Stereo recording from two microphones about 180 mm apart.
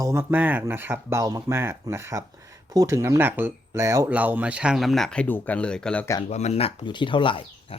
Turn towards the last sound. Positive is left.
turn(degrees=30)  # may be behind; listen again after turning